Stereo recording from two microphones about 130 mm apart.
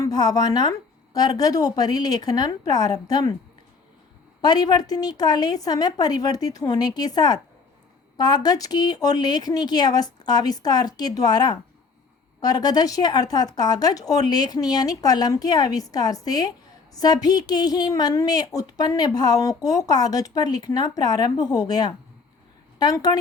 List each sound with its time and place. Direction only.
0.0 s speech: 30° left (ahead or behind)
4.4 s speech: 30° left (ahead or behind)